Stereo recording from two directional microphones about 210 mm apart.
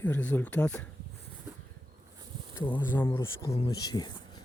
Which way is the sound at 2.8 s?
10° left (ahead or behind).